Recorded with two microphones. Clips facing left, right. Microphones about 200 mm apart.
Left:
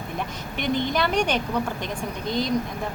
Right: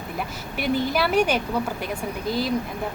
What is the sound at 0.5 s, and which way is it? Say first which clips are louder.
A woman's voice: right 1 dB; 5° right (ahead or behind).